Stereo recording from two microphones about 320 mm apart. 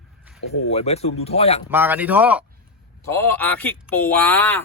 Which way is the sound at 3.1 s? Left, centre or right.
Centre.